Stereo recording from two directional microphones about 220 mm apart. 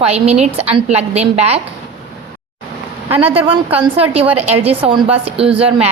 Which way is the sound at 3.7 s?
25° right (ahead or behind).